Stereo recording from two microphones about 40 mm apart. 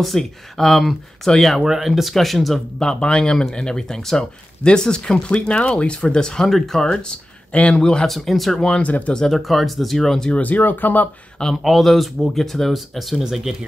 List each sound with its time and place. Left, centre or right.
0.2 s speech: centre
1.6 s speech: centre
1.9 s speech: centre
2.8 s speech: left
6.0 s speech: centre
6.4 s speech: centre
7.0 s speech: left
8.1 s speech: centre
8.5 s speech: left
8.8 s speech: left
9.3 s speech: centre
9.9 s speech: centre
10.3 s speech: left
11.6 s speech: centre